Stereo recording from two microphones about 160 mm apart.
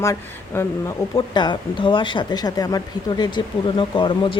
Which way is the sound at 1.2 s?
25° left (ahead or behind).